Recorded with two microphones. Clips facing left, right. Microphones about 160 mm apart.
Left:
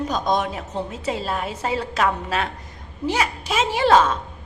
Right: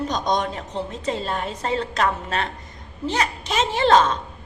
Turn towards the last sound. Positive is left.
turn(degrees=5)  # may be behind; listen again after turning